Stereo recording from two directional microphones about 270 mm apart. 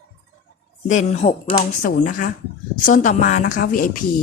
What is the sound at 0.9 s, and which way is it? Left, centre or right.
Speech, left.